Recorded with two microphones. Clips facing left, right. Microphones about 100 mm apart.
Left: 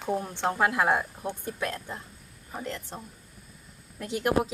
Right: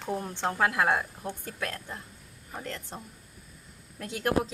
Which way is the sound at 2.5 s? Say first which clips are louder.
Left 3 dB; 5° left (ahead or behind).